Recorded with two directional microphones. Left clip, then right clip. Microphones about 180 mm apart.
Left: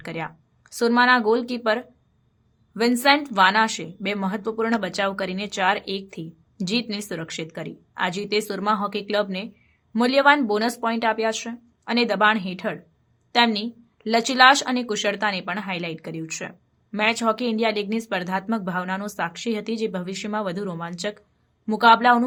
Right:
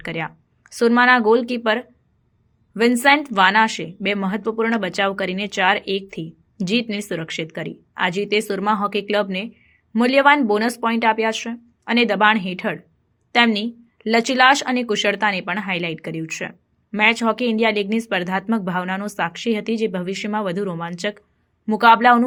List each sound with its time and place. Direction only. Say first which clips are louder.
0.0 s a woman's voice: right 4 dB; 15° right (ahead or behind)